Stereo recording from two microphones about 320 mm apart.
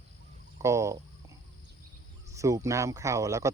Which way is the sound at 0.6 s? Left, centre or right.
Centre.